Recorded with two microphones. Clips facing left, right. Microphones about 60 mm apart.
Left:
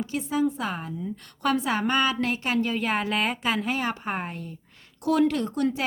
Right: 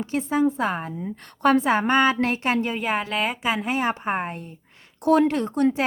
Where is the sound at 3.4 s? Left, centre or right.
Centre.